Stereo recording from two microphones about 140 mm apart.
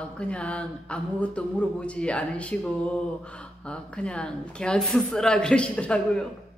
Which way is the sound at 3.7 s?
5° left (ahead or behind).